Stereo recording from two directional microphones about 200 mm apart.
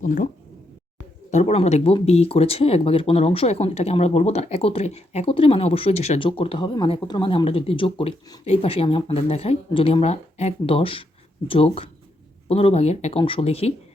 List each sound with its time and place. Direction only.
0.0 s speech: 40° left (ahead or behind)
1.3 s speech: 35° left (ahead or behind)